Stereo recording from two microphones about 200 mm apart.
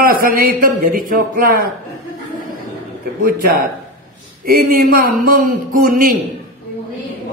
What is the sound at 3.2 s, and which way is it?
Speech, 45° right (ahead or behind).